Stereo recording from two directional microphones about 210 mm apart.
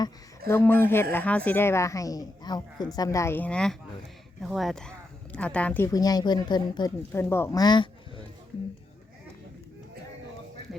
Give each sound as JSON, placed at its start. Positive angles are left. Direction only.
{"t": 0.0, "sound": "speech", "side_deg": 10}